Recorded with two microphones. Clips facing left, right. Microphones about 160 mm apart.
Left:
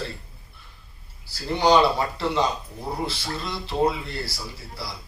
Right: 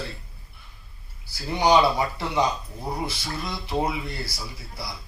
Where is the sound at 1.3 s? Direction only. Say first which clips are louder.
Left 1 dB; 15° right (ahead or behind).